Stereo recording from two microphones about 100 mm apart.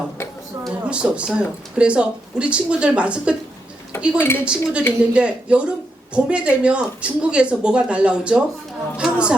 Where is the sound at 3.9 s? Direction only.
25° left (ahead or behind).